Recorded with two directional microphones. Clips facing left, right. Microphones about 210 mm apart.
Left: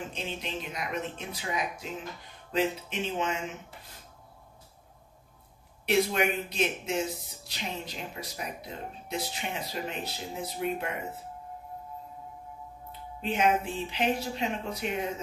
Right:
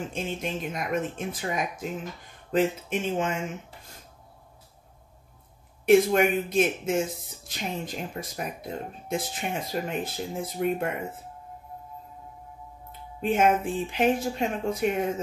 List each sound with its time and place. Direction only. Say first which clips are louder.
0.1 s speech: right 5 dB; 50° right (ahead or behind)
5.9 s speech: right 7 dB; 50° right (ahead or behind)
13.2 s speech: right 4 dB; 50° right (ahead or behind)